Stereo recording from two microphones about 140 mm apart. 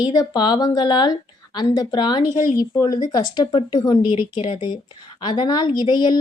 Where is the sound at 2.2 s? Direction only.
65° left (ahead or behind).